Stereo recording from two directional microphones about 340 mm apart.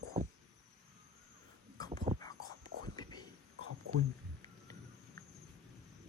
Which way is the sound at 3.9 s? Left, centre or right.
Right.